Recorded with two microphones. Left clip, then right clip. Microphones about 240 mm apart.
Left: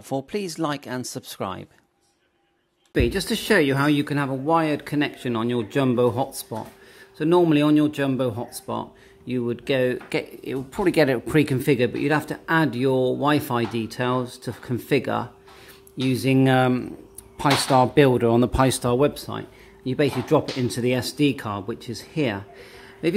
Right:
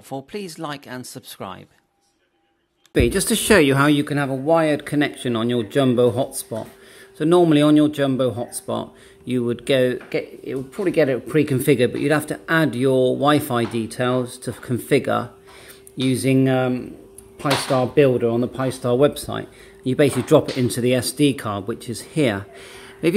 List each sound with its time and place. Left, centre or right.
0.1 s speech: centre
2.9 s speech: centre
10.0 s speech: centre
11.5 s speech: centre
16.4 s speech: centre
18.9 s speech: centre